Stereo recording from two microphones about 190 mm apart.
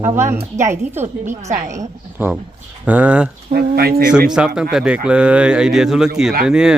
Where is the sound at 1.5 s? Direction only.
40° right (ahead or behind).